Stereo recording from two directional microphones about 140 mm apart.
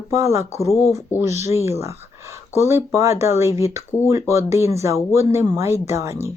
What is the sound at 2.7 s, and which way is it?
Speech, 20° right (ahead or behind).